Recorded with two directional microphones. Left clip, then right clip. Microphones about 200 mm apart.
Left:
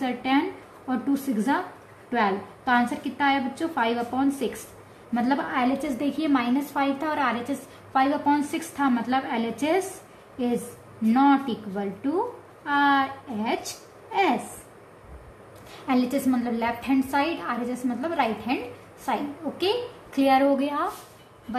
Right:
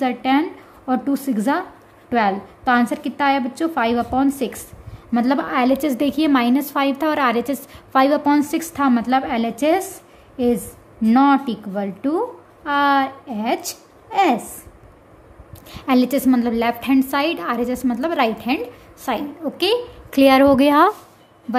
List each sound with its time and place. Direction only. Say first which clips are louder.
0.0 s a woman's voice: right 6 dB; 50° right (ahead or behind)
15.9 s a woman's voice: right 7 dB; 50° right (ahead or behind)